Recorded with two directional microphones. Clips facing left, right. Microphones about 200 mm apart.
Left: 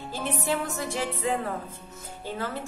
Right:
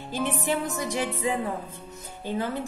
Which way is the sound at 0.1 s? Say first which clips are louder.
Right 2 dB; 15° right (ahead or behind).